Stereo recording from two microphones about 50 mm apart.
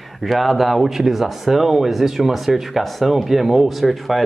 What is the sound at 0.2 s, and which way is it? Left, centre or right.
Speech, centre.